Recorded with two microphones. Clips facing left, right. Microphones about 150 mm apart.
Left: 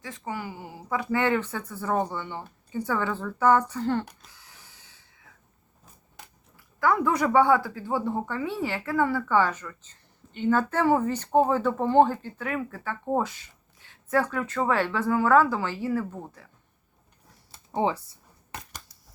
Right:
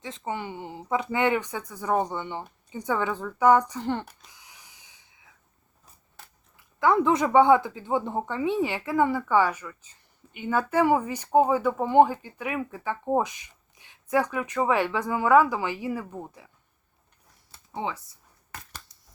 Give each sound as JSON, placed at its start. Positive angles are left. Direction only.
{"t": 0.0, "sound": "a woman's voice", "side_deg": -25}
{"t": 4.3, "sound": "a sound", "side_deg": -15}
{"t": 6.7, "sound": "a woman's voice", "side_deg": -20}
{"t": 17.7, "sound": "speech", "side_deg": 35}